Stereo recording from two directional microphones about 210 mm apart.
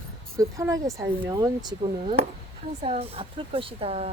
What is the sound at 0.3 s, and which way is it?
Speech, 15° right (ahead or behind).